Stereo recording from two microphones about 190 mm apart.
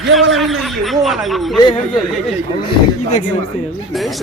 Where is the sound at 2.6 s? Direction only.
40° left (ahead or behind).